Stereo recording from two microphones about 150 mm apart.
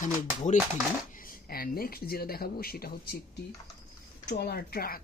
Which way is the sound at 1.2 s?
80° left.